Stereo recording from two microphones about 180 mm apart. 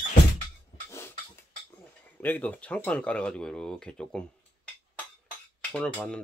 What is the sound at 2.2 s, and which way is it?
Speech, 10° left (ahead or behind).